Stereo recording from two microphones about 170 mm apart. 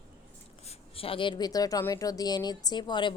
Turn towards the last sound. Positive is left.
turn(degrees=25)  # may be behind; listen again after turning